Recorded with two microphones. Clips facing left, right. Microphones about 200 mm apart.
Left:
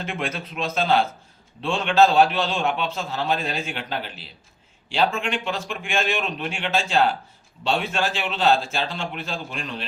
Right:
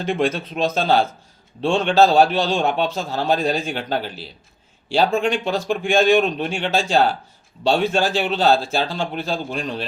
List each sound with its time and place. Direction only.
0.0 s a man's voice: 35° right (ahead or behind)